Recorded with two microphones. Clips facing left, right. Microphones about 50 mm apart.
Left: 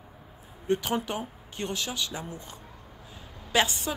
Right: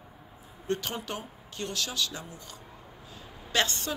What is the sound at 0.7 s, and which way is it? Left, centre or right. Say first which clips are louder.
Speech: left 5 dB; centre.